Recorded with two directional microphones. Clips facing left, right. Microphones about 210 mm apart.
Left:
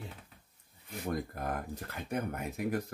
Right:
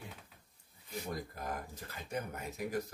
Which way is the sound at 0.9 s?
60° left (ahead or behind).